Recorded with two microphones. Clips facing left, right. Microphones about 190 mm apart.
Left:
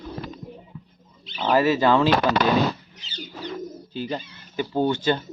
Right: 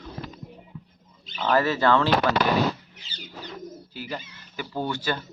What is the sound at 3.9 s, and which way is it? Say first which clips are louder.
Speech: left 7 dB; 25° left (ahead or behind).